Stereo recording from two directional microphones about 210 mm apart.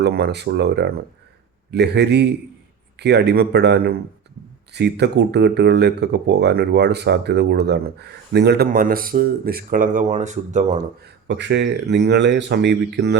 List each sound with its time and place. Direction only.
0.0 s speech: 50° right (ahead or behind); by 10.8 s 35° right (ahead or behind)
11.0 s speech: 55° right (ahead or behind)